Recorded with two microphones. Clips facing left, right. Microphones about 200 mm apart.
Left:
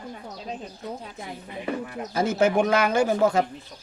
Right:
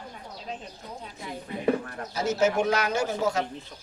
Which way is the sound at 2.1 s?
55° left (ahead or behind).